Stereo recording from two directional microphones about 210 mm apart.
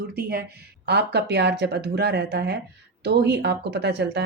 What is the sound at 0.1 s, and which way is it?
Speech, 45° right (ahead or behind).